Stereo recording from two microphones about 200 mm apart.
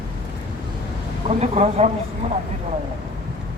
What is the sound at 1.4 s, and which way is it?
Speech, 30° right (ahead or behind).